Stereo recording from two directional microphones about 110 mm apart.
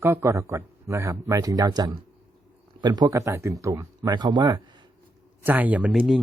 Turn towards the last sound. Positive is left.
turn(degrees=-5)  # may be behind; listen again after turning